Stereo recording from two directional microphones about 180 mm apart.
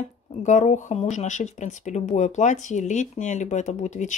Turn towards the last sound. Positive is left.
turn(degrees=40)  # may be behind; listen again after turning